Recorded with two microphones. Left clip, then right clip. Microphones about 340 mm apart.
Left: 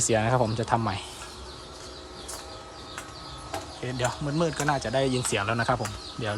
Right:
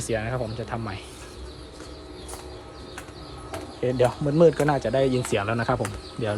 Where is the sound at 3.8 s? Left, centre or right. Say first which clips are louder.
Right 9 dB; centre.